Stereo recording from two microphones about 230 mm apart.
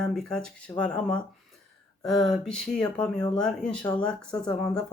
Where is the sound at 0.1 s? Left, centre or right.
Centre.